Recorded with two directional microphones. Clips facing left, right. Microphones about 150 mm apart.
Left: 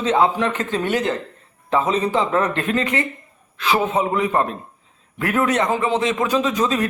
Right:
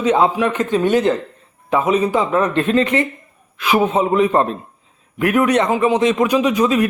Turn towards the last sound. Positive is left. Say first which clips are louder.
# right 5 dB
turn(degrees=-10)  # may be behind; listen again after turning